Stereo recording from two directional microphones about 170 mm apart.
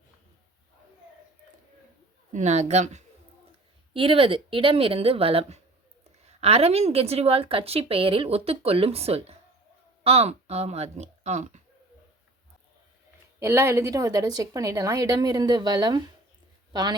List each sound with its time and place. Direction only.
2.3 s a woman's voice: 45° right (ahead or behind)
3.9 s a woman's voice: 30° right (ahead or behind)
13.4 s a woman's voice: 15° right (ahead or behind)